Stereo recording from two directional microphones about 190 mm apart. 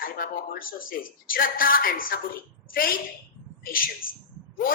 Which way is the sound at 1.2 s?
50° left (ahead or behind).